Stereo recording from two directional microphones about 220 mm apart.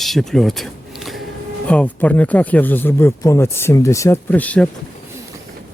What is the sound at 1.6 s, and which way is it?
Speech, 5° left (ahead or behind).